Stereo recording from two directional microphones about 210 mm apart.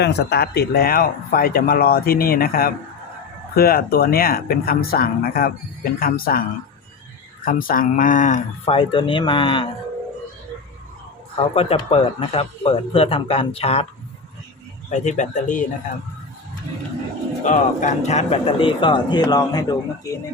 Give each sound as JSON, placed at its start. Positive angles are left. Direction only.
{"t": 0.0, "sound": "a man's voice", "side_deg": 50}
{"t": 11.3, "sound": "a man's voice", "side_deg": 25}
{"t": 14.8, "sound": "speech", "side_deg": 35}
{"t": 17.4, "sound": "a man's voice", "side_deg": 35}